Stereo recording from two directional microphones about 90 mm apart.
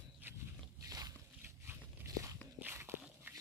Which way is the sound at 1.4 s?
25° right (ahead or behind).